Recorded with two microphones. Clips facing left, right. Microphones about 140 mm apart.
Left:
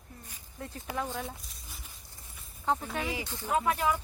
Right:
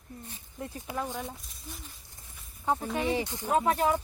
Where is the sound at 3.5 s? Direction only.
35° right (ahead or behind).